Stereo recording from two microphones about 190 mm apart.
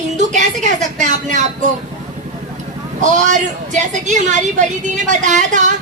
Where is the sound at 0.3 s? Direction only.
40° right (ahead or behind).